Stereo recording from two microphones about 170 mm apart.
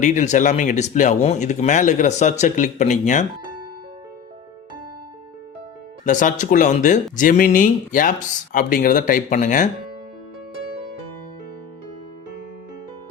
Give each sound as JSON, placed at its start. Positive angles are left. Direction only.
{"t": 0.0, "sound": "speech", "side_deg": 45}
{"t": 6.1, "sound": "speech", "side_deg": 50}